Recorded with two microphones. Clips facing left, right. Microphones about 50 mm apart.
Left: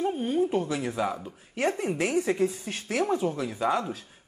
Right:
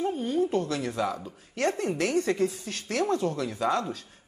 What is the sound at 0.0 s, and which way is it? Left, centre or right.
Speech, centre.